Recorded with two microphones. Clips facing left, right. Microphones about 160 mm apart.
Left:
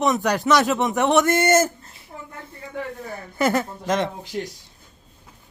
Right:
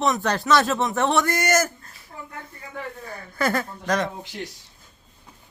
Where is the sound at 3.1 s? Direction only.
20° left (ahead or behind).